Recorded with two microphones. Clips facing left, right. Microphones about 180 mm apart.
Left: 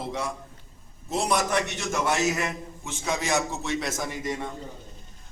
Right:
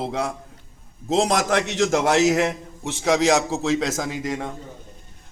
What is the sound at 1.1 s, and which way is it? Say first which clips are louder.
A man's voice: right 5 dB; 90° right.